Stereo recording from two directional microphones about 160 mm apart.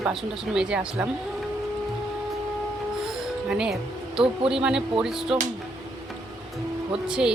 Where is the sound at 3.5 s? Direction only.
5° right (ahead or behind).